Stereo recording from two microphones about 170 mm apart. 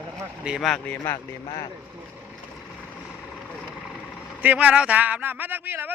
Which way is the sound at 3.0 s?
Centre (ahead or behind).